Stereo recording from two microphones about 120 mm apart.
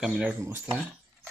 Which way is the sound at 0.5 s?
15° right (ahead or behind).